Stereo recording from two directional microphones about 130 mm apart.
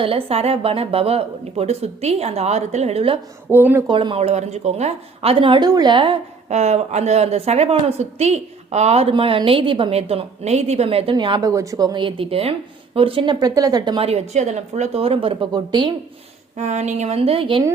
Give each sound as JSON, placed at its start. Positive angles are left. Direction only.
{"t": 0.0, "sound": "speech", "side_deg": -50}
{"t": 3.5, "sound": "speech", "side_deg": -15}
{"t": 3.8, "sound": "speech", "side_deg": -40}
{"t": 4.2, "sound": "speech", "side_deg": -60}
{"t": 6.5, "sound": "speech", "side_deg": -60}
{"t": 14.0, "sound": "speech", "side_deg": -55}
{"t": 16.6, "sound": "a woman's voice", "side_deg": -60}